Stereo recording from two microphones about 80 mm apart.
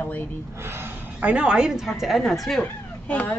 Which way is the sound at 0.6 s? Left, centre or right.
Right.